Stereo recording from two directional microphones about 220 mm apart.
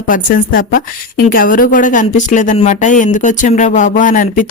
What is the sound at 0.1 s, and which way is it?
A woman's voice, 40° left (ahead or behind).